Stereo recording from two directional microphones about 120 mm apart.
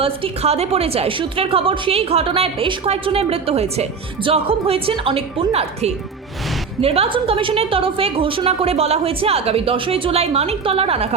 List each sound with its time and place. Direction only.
0.0 s a woman's voice: 55° right (ahead or behind)